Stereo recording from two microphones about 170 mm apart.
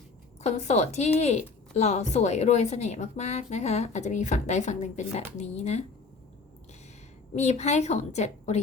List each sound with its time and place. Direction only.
0.4 s a woman's voice: 40° left (ahead or behind)
7.3 s a woman's voice: 40° left (ahead or behind)